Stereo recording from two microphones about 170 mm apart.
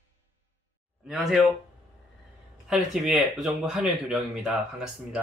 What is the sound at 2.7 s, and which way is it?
Speech, centre (ahead or behind).